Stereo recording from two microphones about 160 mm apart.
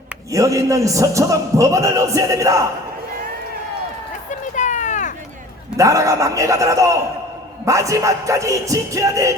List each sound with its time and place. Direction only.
0.3 s a man's voice: 20° right (ahead or behind)
4.3 s a sound: 50° left (ahead or behind)
5.7 s a man's voice: 20° right (ahead or behind)